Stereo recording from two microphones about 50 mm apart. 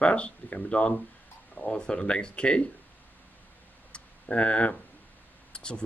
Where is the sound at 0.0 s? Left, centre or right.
Left.